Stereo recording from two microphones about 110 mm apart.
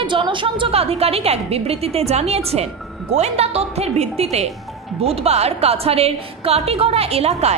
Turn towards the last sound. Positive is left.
turn(degrees=-65)  # may be behind; listen again after turning